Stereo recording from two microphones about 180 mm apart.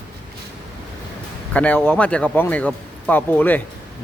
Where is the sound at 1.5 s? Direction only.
10° left (ahead or behind).